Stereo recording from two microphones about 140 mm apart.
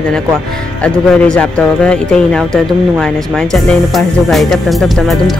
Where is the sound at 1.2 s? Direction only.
5° left (ahead or behind).